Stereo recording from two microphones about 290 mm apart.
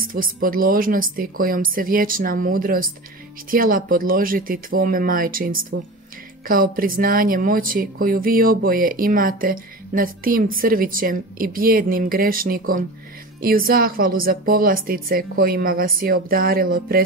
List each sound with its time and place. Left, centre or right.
0.1 s speech: right